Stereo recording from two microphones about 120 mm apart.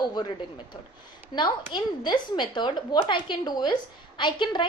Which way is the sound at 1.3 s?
40° left (ahead or behind).